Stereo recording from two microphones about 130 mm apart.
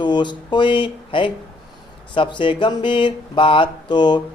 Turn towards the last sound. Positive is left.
turn(degrees=35)  # may be behind; listen again after turning